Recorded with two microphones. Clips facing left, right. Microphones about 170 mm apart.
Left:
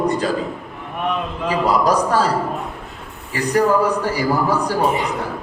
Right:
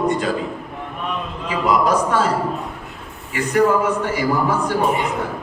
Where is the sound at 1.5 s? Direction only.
35° left (ahead or behind).